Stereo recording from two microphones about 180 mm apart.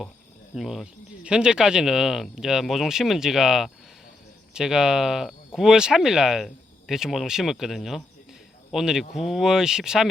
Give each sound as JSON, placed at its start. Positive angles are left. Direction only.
{"t": 0.5, "sound": "speech", "side_deg": 0}